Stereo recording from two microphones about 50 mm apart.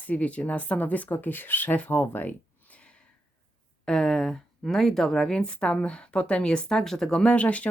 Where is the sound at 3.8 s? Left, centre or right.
Centre.